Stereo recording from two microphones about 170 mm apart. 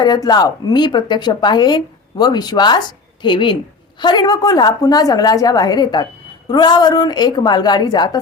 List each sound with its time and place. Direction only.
0.0 s a woman's voice: 25° left (ahead or behind)